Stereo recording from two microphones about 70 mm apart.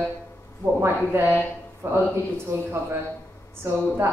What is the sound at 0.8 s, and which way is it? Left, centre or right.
A woman's voice, right.